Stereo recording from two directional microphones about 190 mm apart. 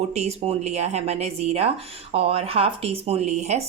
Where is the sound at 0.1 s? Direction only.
35° right (ahead or behind).